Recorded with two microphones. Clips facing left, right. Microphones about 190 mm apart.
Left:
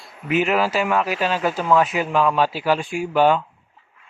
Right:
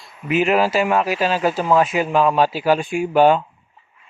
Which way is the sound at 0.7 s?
40° right (ahead or behind).